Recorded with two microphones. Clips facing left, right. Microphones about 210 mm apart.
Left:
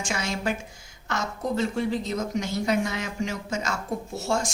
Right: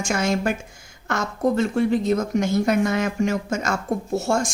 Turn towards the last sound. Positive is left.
turn(degrees=-50)  # may be behind; listen again after turning